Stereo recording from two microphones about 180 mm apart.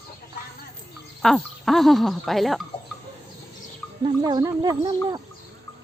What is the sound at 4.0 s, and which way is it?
Speech, 25° right (ahead or behind).